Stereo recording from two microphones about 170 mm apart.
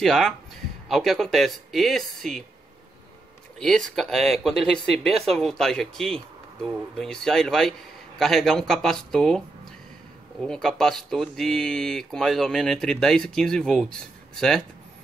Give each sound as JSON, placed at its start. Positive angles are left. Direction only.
{"t": 0.0, "sound": "speech", "side_deg": 0}
{"t": 3.5, "sound": "speech", "side_deg": 5}
{"t": 10.4, "sound": "speech", "side_deg": 5}